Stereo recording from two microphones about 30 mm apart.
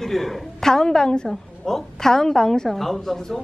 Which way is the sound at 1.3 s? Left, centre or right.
Centre.